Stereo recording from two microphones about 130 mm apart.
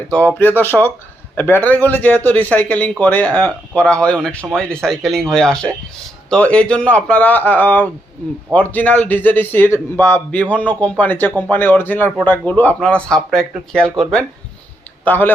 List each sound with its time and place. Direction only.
0.3 s a man's voice: 15° left (ahead or behind)